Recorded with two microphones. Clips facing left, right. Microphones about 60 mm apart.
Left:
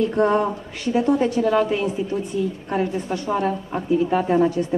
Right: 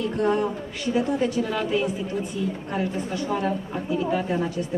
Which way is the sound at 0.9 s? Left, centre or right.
Left.